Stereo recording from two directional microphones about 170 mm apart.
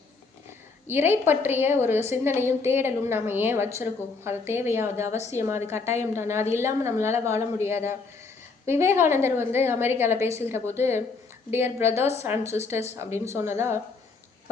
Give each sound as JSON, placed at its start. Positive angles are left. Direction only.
{"t": 0.9, "sound": "a woman's voice", "side_deg": -15}